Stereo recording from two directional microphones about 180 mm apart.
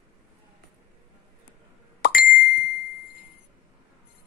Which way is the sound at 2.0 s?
55° left (ahead or behind).